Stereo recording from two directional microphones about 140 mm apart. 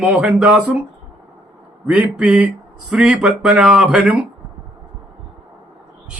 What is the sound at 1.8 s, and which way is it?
Speech, 10° right (ahead or behind).